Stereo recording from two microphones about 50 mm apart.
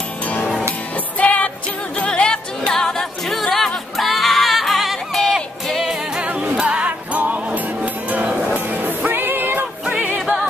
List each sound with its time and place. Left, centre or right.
1.1 s music: left
2.0 s music: centre
6.2 s music: right
7.2 s music: right
8.2 s music: centre
8.5 s music: right
9.8 s music: right